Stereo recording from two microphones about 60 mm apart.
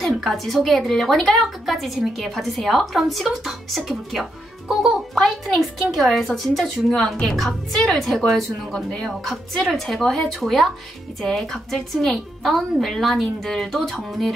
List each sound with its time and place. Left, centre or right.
0.0 s a woman's voice: centre